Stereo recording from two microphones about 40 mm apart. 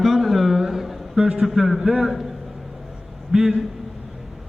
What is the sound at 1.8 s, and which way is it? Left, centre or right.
Speech, right.